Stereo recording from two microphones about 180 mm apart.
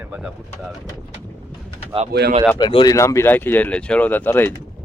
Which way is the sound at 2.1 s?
60° right (ahead or behind).